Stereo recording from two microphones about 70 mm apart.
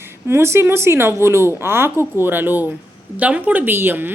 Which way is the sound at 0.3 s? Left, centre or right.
Right.